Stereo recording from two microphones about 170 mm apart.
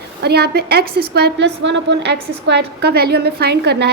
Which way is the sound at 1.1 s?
80° right.